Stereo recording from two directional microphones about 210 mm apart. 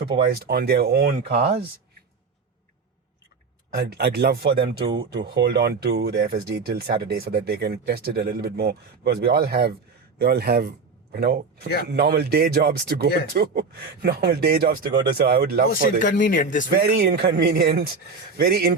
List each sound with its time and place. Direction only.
0.0 s speech: 50° right (ahead or behind)
3.8 s speech: 50° right (ahead or behind)
4.9 s speech: 20° right (ahead or behind)
5.4 s speech: 50° right (ahead or behind)
15.7 s speech: 40° left (ahead or behind)
16.8 s speech: 50° right (ahead or behind)